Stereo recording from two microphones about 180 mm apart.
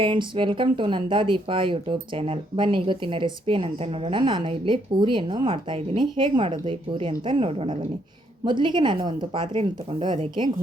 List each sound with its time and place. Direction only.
0.0 s speech: 25° right (ahead or behind)